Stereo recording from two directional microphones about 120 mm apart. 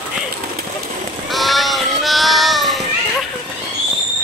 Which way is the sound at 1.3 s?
Centre (ahead or behind).